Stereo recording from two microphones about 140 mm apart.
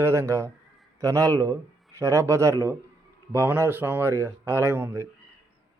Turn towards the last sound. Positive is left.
turn(degrees=-20)  # may be behind; listen again after turning